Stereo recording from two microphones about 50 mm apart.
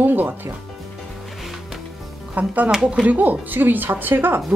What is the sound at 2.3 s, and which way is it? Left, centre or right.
A woman's voice, right.